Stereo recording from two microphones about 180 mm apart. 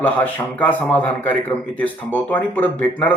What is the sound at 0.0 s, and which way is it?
A man's voice, 10° left (ahead or behind).